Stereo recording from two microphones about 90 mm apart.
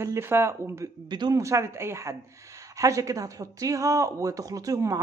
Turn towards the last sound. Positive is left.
turn(degrees=-40)  # may be behind; listen again after turning